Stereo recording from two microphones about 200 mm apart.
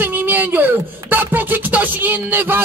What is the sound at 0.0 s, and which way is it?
Speech, 10° right (ahead or behind).